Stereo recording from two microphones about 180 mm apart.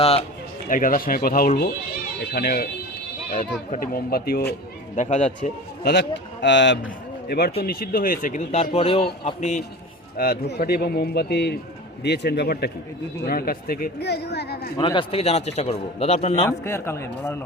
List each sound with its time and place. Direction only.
0.7 s speech: 50° left (ahead or behind)
3.7 s speech: 55° left (ahead or behind)
4.9 s a man's voice: 40° left (ahead or behind)
5.8 s a man's voice: 70° left (ahead or behind)
7.3 s a man's voice: 60° left (ahead or behind); by 9.6 s 40° left (ahead or behind)
10.2 s speech: 55° left (ahead or behind)
14.8 s a man's voice: 25° left (ahead or behind)
16.5 s speech: 15° left (ahead or behind)